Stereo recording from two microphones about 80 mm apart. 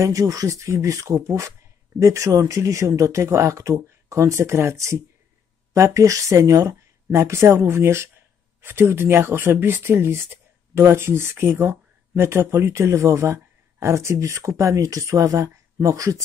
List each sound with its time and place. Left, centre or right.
0.0 s speech: right